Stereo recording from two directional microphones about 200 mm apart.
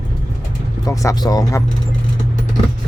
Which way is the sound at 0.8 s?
15° left (ahead or behind).